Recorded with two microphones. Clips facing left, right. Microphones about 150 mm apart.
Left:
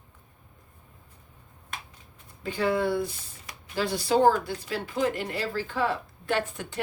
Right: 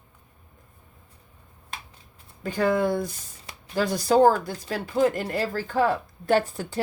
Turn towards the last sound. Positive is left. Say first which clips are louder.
# right 6 dB
turn(degrees=-35)  # may be behind; listen again after turning